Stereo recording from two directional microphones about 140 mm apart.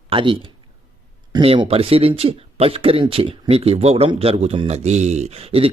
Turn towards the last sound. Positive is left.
turn(degrees=-45)  # may be behind; listen again after turning